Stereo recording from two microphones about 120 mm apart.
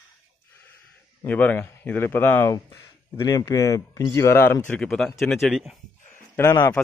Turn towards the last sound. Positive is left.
turn(degrees=20)  # may be behind; listen again after turning